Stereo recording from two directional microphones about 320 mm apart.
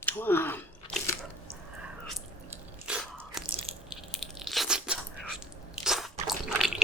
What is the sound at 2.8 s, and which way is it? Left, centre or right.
Biting, centre.